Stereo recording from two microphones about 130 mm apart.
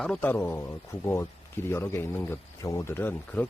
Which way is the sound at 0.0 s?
10° left (ahead or behind).